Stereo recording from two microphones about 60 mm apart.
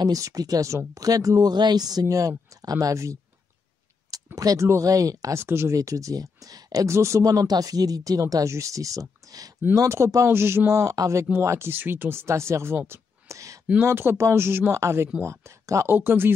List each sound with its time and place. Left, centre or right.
0.0 s speech: right
4.4 s speech: right
4.6 s speech: right
5.3 s speech: right
5.8 s speech: right
6.9 s speech: right
9.2 s a sound: right
9.8 s speech: right
10.7 s speech: right
11.4 s speech: right
13.3 s a sound: right
13.7 s speech: right
15.9 s speech: right